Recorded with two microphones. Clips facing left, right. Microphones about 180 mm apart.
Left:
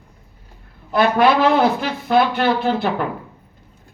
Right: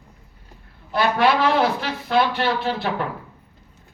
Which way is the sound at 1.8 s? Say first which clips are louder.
Left 4 dB; 50° left (ahead or behind).